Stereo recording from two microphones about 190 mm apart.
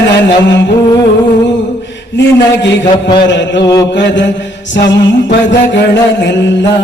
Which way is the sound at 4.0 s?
70° left (ahead or behind).